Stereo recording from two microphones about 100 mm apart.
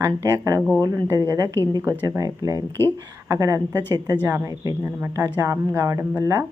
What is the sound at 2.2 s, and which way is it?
Speech, 35° right (ahead or behind).